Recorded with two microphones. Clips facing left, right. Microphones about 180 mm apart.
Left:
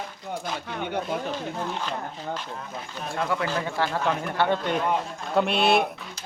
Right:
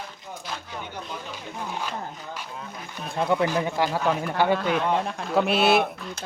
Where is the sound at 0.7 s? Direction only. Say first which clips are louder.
Left 7 dB; 60° left (ahead or behind).